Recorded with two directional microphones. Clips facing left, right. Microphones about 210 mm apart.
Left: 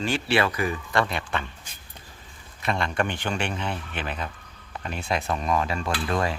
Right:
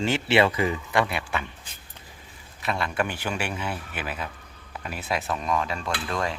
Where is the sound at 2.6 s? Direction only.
5° right (ahead or behind).